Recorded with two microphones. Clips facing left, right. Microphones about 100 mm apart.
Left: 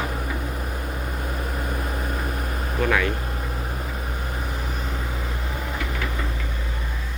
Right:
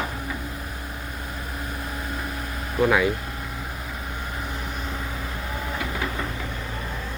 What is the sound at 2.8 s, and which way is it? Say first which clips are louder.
Speech: right 3 dB; 15° right (ahead or behind).